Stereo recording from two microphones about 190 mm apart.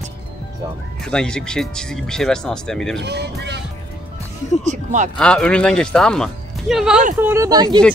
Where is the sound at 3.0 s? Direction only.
60° right (ahead or behind).